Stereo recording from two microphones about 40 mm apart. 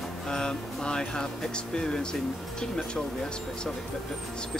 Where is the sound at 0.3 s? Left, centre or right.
Centre.